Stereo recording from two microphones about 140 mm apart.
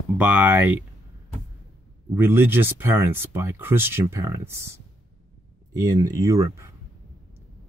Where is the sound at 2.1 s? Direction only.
15° right (ahead or behind).